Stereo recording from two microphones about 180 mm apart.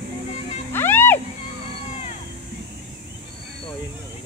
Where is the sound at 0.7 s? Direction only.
10° left (ahead or behind).